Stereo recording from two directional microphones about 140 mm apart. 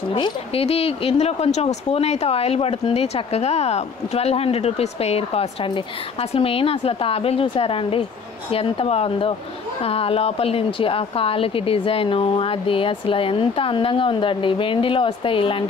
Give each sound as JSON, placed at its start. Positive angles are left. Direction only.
{"t": 0.1, "sound": "speech", "side_deg": 40}